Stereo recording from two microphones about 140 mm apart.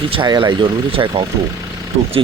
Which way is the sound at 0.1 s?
35° right (ahead or behind).